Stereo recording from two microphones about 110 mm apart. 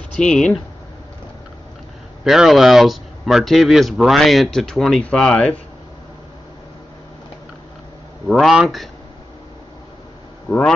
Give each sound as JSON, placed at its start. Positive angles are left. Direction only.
{"t": 0.1, "sound": "speech", "side_deg": 10}
{"t": 2.2, "sound": "speech", "side_deg": -5}
{"t": 8.3, "sound": "speech", "side_deg": 0}
{"t": 10.5, "sound": "speech", "side_deg": 30}